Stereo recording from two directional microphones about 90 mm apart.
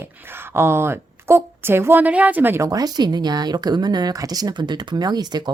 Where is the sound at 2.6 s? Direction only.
45° right (ahead or behind).